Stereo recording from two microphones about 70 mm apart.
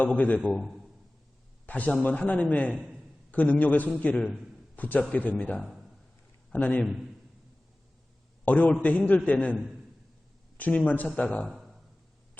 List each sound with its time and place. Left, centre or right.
0.0 s a man's voice: left
1.6 s a man's voice: left
8.4 s a man's voice: left
10.6 s a man's voice: left
11.4 s a sound: centre